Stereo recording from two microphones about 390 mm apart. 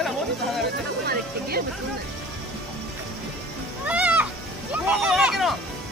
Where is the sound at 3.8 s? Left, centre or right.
Centre.